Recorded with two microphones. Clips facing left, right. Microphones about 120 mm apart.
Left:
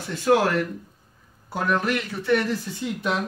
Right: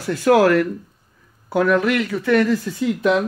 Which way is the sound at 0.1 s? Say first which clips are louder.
Right 6 dB; 90° right.